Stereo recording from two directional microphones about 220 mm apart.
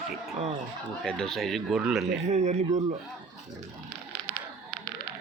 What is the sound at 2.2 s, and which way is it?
Speech, 30° right (ahead or behind).